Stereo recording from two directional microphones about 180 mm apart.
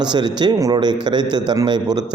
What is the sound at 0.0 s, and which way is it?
A man's voice, 25° right (ahead or behind).